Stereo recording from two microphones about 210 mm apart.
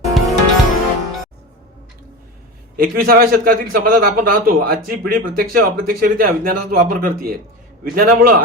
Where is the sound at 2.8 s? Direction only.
45° right (ahead or behind).